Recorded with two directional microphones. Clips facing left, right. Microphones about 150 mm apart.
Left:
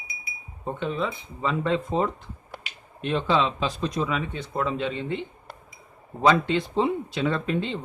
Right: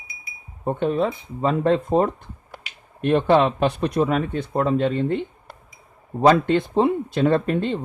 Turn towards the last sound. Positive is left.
turn(degrees=-50)  # may be behind; listen again after turning